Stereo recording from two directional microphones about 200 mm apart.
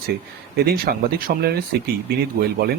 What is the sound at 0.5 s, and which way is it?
Speech, 50° right (ahead or behind).